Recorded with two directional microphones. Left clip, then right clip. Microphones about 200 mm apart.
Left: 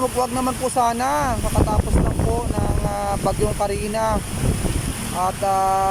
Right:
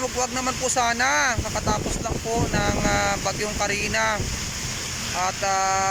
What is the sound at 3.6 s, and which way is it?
Speech, 20° left (ahead or behind).